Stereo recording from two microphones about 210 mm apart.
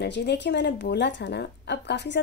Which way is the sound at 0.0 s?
55° left (ahead or behind).